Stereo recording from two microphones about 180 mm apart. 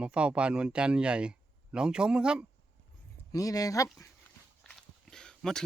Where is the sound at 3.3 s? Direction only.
20° left (ahead or behind).